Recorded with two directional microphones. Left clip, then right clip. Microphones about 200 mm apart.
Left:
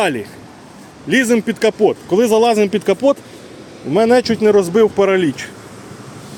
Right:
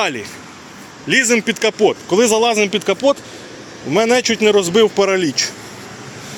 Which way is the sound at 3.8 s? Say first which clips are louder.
Left 2 dB; 15° left (ahead or behind).